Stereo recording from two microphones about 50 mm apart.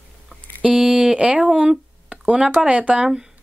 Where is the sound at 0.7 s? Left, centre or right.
Centre.